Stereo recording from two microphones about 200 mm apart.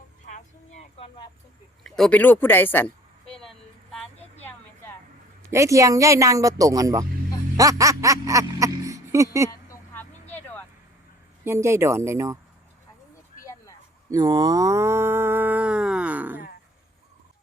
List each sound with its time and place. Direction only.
0.7 s a sound: 30° left (ahead or behind)
1.8 s speech: 5° left (ahead or behind)
3.3 s vehicle: centre (ahead or behind)
5.5 s speech: 15° right (ahead or behind)
9.5 s a sound: 15° left (ahead or behind)
10.3 s vehicle: 10° left (ahead or behind)
11.4 s speech: 15° right (ahead or behind)
13.4 s vehicle: 15° left (ahead or behind)
14.1 s speech: 20° right (ahead or behind)